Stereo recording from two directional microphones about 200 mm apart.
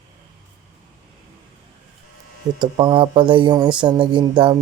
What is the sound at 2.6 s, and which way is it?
Speech, 25° right (ahead or behind).